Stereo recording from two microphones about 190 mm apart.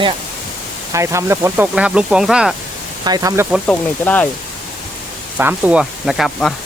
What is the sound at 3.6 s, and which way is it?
Speech, 10° left (ahead or behind).